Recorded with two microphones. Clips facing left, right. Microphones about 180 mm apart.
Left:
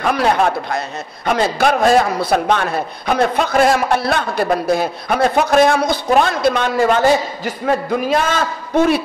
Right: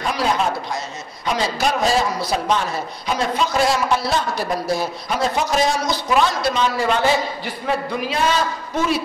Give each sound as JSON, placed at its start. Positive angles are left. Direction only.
{"t": 0.0, "sound": "a man's voice", "side_deg": 60}